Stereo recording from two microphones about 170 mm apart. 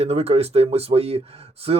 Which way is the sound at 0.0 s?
35° right (ahead or behind).